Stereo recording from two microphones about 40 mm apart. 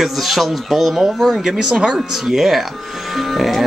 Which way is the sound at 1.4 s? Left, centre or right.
Centre.